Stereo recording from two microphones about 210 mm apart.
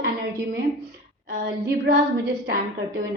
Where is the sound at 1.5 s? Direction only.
50° right (ahead or behind).